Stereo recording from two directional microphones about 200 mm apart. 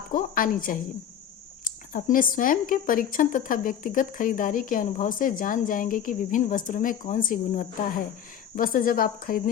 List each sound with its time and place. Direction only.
0.1 s a woman's voice: 45° left (ahead or behind)